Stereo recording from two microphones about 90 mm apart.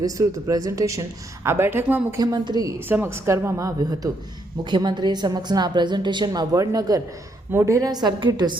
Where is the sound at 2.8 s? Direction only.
25° right (ahead or behind); by 4.0 s 40° right (ahead or behind).